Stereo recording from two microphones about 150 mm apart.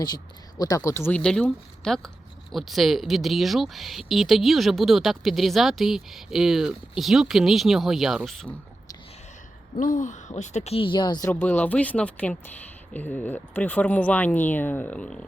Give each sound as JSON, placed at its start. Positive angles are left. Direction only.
{"t": 0.6, "sound": "speech", "side_deg": 25}
{"t": 9.7, "sound": "speech", "side_deg": 60}
{"t": 11.3, "sound": "speech", "side_deg": 10}